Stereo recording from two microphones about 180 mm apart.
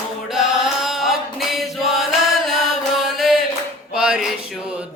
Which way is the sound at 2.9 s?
Centre (ahead or behind).